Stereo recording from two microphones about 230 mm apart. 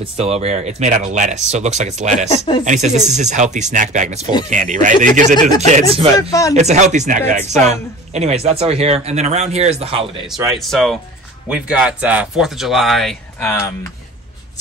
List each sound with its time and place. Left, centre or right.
0.0 s speech: right
2.2 s speech: left
2.6 s speech: right
10.6 s speech: centre